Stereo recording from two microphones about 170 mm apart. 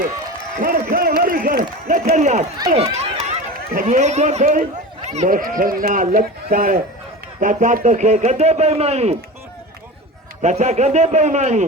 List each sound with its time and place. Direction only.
0.6 s a sound: 60° right (ahead or behind)
2.1 s speech: 45° right (ahead or behind)
2.7 s run: 40° right (ahead or behind)
3.8 s a man's voice: 45° right (ahead or behind)
10.4 s speech: 40° right (ahead or behind)